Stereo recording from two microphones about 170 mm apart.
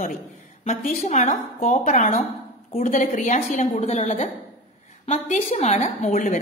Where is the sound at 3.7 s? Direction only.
40° left (ahead or behind).